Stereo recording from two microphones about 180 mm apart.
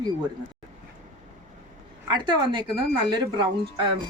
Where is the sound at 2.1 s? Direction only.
25° right (ahead or behind).